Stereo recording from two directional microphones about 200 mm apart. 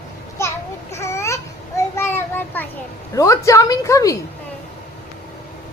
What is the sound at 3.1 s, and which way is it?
A woman's voice, 15° left (ahead or behind).